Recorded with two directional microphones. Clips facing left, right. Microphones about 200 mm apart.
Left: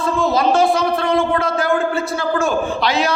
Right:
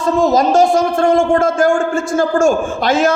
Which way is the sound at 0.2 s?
45° right (ahead or behind).